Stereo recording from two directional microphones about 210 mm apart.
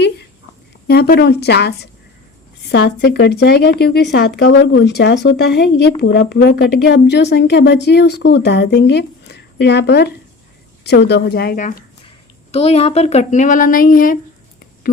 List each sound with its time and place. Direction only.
0.9 s a woman's voice: 50° left (ahead or behind)
12.5 s speech: 30° left (ahead or behind)